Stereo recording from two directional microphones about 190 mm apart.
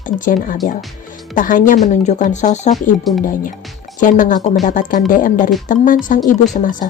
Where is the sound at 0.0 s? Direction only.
45° left (ahead or behind).